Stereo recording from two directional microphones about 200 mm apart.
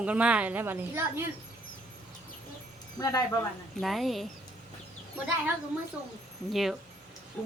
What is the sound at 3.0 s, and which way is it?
Speech, 15° left (ahead or behind).